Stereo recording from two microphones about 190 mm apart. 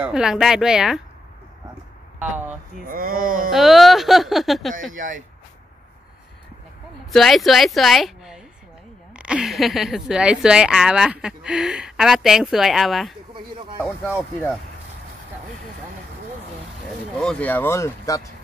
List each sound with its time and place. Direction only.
0.0 s a woman's voice: 5° right (ahead or behind)
2.2 s speech: 10° right (ahead or behind)
2.9 s speech: 50° right (ahead or behind)
3.5 s a woman's voice: centre (ahead or behind)
4.9 s speech: 45° right (ahead or behind)
7.1 s a woman's voice: centre (ahead or behind)
17.2 s speech: 5° left (ahead or behind)